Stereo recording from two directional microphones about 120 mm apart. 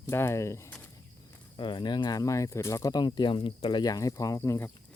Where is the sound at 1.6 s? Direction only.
40° left (ahead or behind); by 4.7 s 20° left (ahead or behind).